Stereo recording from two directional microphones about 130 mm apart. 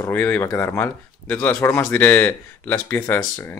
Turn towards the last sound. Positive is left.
turn(degrees=15)  # may be behind; listen again after turning